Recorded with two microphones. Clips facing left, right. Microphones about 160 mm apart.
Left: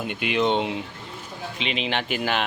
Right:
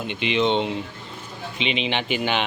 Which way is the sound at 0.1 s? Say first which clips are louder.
Right 1 dB; 5° left (ahead or behind).